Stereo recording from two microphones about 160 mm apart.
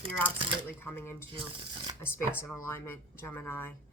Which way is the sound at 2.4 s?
15° left (ahead or behind).